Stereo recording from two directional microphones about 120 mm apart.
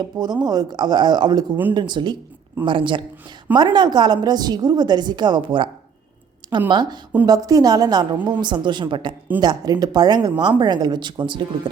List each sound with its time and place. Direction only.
0.0 s a woman's voice: 35° right (ahead or behind)
6.7 s a woman's voice: 35° right (ahead or behind)